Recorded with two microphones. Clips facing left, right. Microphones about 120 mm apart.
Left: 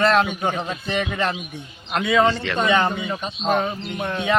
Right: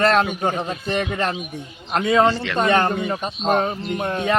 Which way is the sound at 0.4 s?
40° right (ahead or behind).